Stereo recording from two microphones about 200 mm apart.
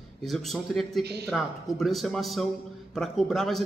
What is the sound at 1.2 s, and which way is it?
A man's voice, centre (ahead or behind).